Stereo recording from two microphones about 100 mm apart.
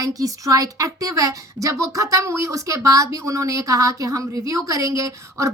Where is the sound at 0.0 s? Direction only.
35° right (ahead or behind).